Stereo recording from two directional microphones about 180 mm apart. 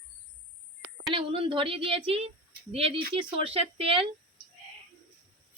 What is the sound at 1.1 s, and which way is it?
A woman's voice, 30° right (ahead or behind).